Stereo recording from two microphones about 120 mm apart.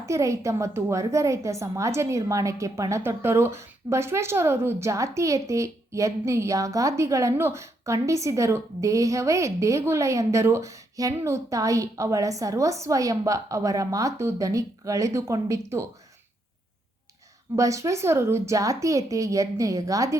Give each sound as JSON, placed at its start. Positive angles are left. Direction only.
{"t": 0.0, "sound": "a woman's voice", "side_deg": -25}
{"t": 17.5, "sound": "a woman's voice", "side_deg": -25}